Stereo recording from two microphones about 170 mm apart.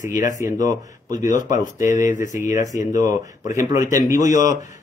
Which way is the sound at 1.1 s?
45° left (ahead or behind).